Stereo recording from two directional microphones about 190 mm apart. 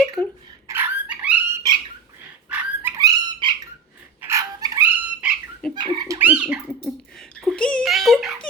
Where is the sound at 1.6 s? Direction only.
20° right (ahead or behind).